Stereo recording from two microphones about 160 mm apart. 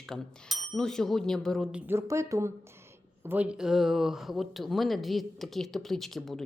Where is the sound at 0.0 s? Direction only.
Centre (ahead or behind).